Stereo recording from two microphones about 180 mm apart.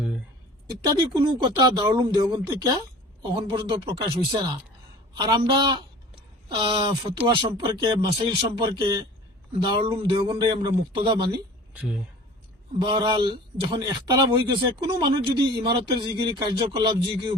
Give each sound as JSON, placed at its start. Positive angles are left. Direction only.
{"t": 0.9, "sound": "a man's voice", "side_deg": -25}
{"t": 11.7, "sound": "speech", "side_deg": -10}
{"t": 12.8, "sound": "a man's voice", "side_deg": -25}